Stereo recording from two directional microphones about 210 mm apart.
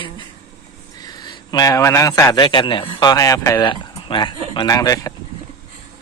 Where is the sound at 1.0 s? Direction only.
20° left (ahead or behind).